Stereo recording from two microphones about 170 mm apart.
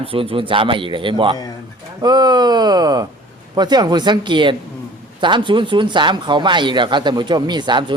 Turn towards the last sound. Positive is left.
turn(degrees=-25)  # may be behind; listen again after turning